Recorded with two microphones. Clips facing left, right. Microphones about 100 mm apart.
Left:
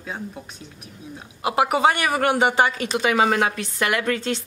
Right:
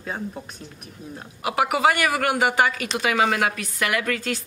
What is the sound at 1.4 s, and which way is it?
A woman's voice, 25° left (ahead or behind).